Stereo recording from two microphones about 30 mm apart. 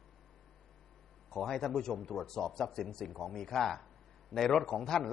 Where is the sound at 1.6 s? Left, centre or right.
Centre.